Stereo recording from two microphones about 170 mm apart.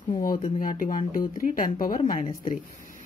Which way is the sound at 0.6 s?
50° left (ahead or behind).